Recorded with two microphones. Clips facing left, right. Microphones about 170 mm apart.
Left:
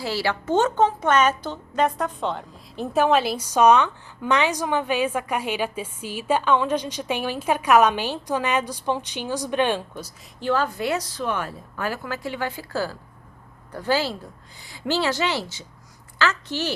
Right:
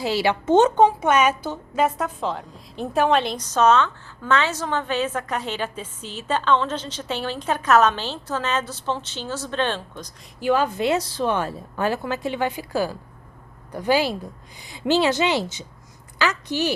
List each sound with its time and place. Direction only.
0.0 s a woman's voice: 20° right (ahead or behind); by 10.1 s 10° left (ahead or behind)
10.4 s a woman's voice: 15° right (ahead or behind)